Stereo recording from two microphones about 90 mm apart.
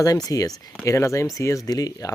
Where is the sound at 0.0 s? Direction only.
40° left (ahead or behind).